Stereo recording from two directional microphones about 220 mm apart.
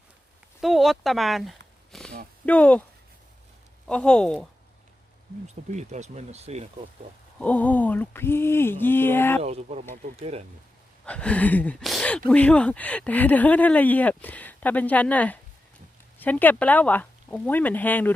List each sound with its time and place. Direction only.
0.6 s a sound: centre (ahead or behind)
2.5 s speech: 5° left (ahead or behind)
3.8 s speech: 5° left (ahead or behind)
5.7 s speech: 30° right (ahead or behind)
7.3 s speech: 5° left (ahead or behind)
9.4 s speech: 30° right (ahead or behind)
11.0 s speech: 5° left (ahead or behind)